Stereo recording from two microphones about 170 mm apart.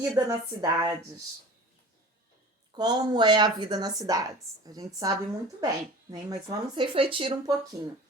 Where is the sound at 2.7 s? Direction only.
25° right (ahead or behind).